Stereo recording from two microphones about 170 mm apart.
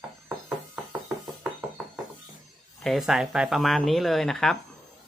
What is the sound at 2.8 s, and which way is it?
Speech, centre (ahead or behind).